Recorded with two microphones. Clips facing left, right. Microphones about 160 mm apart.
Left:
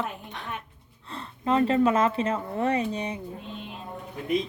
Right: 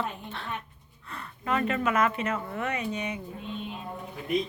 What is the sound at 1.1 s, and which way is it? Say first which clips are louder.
A woman's voice: left 4 dB; 25° left (ahead or behind).